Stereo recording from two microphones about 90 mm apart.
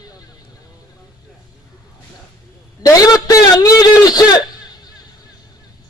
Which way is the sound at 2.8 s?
40° left (ahead or behind).